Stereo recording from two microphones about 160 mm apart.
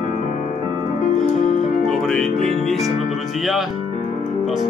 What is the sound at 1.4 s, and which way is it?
Music, 45° left (ahead or behind).